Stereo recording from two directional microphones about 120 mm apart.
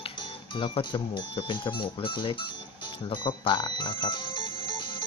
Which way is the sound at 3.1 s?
40° left (ahead or behind).